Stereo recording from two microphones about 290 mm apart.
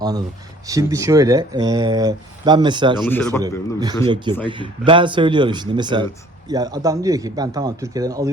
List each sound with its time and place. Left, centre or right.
0.7 s speech: centre
3.1 s a man's voice: centre
3.4 s speech: centre